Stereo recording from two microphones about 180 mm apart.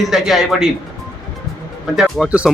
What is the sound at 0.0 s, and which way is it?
Speech, centre (ahead or behind).